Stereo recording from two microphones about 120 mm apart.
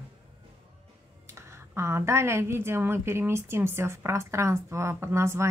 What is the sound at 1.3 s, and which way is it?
A woman's voice, 20° right (ahead or behind).